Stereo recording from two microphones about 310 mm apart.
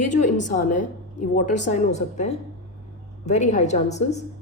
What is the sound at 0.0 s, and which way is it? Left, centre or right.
Speech, left.